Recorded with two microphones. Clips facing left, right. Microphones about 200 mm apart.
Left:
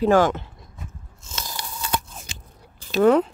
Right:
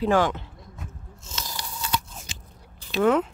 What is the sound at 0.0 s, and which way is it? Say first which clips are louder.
Speech: left 4 dB; 45° left (ahead or behind).